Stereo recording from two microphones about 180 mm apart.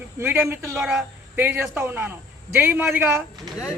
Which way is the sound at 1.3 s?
10° right (ahead or behind).